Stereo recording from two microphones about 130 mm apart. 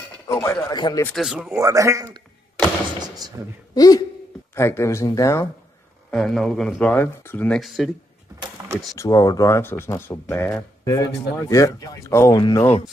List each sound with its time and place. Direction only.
0.3 s speech: 25° left (ahead or behind)
1.1 s speech: centre (ahead or behind)
1.5 s a man's voice: 25° right (ahead or behind)
3.0 s gunshot: 30° right (ahead or behind)
3.7 s speech: 30° left (ahead or behind)
6.1 s speech: centre (ahead or behind)
6.9 s speech: 15° left (ahead or behind)
8.9 s speech: 25° left (ahead or behind)